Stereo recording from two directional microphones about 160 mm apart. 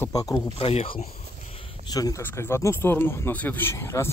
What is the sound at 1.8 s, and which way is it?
Speech, 25° left (ahead or behind).